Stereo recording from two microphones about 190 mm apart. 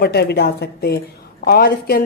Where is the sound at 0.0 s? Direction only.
60° left (ahead or behind).